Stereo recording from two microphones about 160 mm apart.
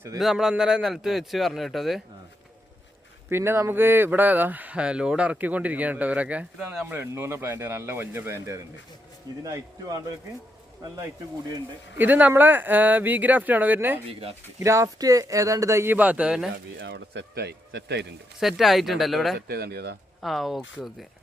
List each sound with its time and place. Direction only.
0.2 s speech: centre (ahead or behind)
3.2 s speech: 15° right (ahead or behind)
11.9 s speech: 10° right (ahead or behind)
14.1 s speech: 35° right (ahead or behind)
14.6 s speech: 20° right (ahead or behind)
16.8 s speech: 90° right
18.3 s speech: centre (ahead or behind)
19.5 s speech: 85° right
20.2 s speech: centre (ahead or behind)